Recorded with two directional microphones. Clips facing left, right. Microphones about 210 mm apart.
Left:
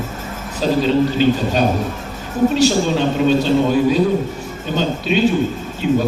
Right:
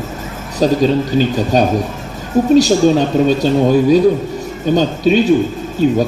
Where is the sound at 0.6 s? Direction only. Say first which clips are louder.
Right 2 dB; 40° right (ahead or behind).